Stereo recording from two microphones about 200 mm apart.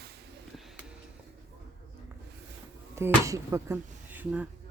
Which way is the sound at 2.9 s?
15° right (ahead or behind).